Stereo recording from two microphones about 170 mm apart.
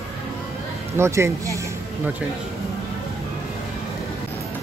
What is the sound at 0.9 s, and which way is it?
Speech, 15° right (ahead or behind).